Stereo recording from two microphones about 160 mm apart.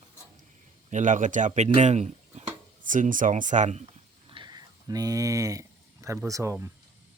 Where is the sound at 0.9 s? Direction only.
50° right (ahead or behind).